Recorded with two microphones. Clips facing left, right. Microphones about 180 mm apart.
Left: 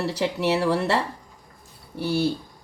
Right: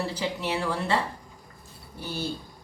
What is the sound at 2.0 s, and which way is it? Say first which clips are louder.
Speech: left 10 dB; 75° left (ahead or behind).